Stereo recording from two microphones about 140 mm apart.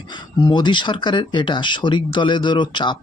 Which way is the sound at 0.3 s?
30° left (ahead or behind).